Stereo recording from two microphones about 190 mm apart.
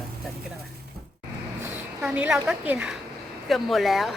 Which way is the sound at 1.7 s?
10° right (ahead or behind).